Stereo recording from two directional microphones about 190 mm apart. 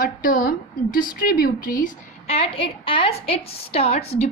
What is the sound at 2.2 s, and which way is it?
A woman's voice, 30° left (ahead or behind).